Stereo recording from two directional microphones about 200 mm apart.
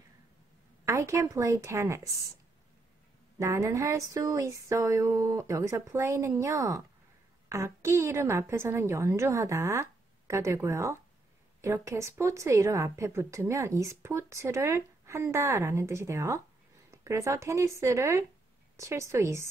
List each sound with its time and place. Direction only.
0.8 s a woman's voice: 15° right (ahead or behind)
3.3 s a woman's voice: 15° right (ahead or behind)